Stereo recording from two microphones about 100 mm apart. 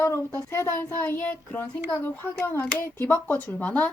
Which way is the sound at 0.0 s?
25° left (ahead or behind).